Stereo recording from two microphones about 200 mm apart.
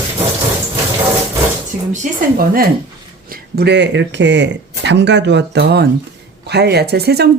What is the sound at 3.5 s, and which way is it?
Speech, 55° right (ahead or behind).